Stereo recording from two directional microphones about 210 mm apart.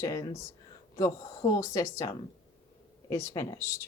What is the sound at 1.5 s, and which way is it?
Speech, 15° left (ahead or behind).